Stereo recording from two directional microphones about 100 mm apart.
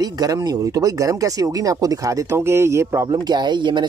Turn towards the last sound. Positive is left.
turn(degrees=-50)  # may be behind; listen again after turning